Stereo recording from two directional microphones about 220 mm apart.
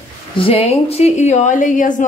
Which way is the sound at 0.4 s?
25° left (ahead or behind).